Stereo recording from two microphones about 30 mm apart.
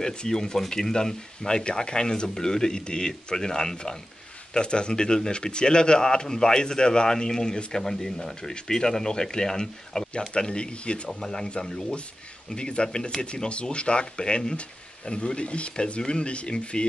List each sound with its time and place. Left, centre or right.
0.0 s speech: left
0.3 s speech: centre
1.6 s speech: left
7.7 s speech: centre
10.3 s speech: left
11.1 s speech: centre
12.5 s speech: left